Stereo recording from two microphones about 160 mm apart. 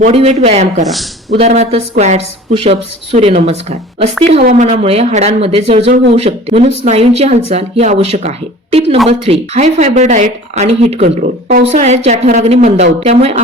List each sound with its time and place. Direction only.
0.1 s a woman's voice: 40° right (ahead or behind)